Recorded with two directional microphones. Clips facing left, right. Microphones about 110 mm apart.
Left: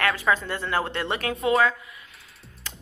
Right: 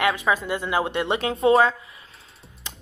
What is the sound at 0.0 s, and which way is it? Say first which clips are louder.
Speech: right 2 dB; 20° right (ahead or behind).